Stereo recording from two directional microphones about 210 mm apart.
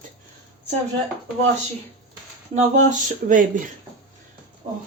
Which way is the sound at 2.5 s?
35° right (ahead or behind).